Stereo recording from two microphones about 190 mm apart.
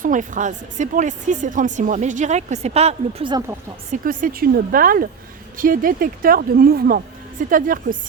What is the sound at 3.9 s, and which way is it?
Speech, 45° right (ahead or behind).